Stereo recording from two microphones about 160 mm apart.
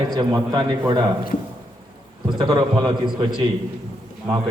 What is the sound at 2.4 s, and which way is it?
Speech, 25° right (ahead or behind).